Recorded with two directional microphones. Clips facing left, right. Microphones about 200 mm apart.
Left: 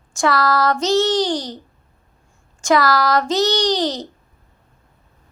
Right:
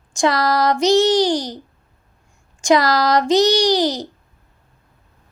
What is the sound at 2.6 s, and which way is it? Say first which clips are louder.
Speech: right 1 dB; 15° right (ahead or behind).